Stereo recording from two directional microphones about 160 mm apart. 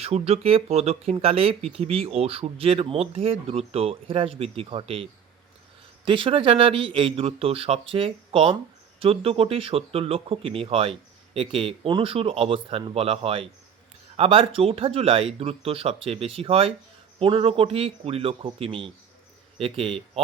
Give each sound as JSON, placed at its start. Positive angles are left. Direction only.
{"t": 0.0, "sound": "speech", "side_deg": -40}
{"t": 6.1, "sound": "speech", "side_deg": -35}